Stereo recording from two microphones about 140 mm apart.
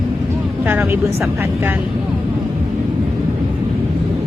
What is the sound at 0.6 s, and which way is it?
Speech, 15° right (ahead or behind).